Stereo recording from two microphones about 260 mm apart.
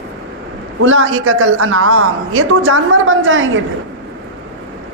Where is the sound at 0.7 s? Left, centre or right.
Right.